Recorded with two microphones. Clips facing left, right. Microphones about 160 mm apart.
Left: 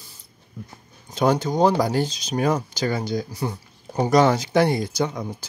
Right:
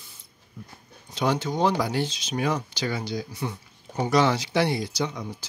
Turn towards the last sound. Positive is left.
turn(degrees=50)  # may be behind; listen again after turning